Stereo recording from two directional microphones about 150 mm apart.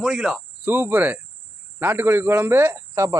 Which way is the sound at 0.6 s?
15° right (ahead or behind).